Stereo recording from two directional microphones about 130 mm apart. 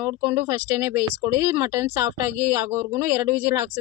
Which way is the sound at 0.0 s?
20° right (ahead or behind).